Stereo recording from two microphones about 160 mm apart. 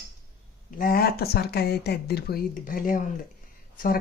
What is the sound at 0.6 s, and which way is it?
Speech, 60° left (ahead or behind).